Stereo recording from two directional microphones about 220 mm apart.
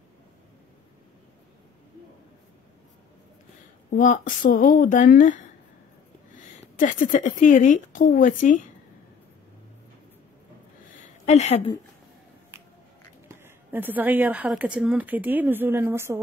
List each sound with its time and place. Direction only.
3.9 s a woman's voice: 35° left (ahead or behind)
11.0 s a sound: 30° left (ahead or behind)
13.4 s a woman's voice: 10° right (ahead or behind)